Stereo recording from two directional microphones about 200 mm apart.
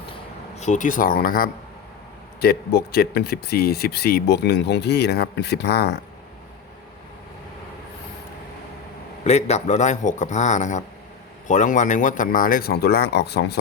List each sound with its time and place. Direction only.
0.5 s speech: 35° left (ahead or behind); by 6.0 s 55° left (ahead or behind)
9.2 s speech: 35° left (ahead or behind); by 13.6 s 55° left (ahead or behind)